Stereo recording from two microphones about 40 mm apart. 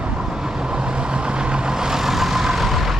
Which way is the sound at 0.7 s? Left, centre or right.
Right.